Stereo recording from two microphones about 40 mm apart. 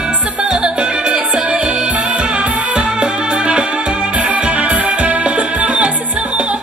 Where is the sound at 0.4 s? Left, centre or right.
Right.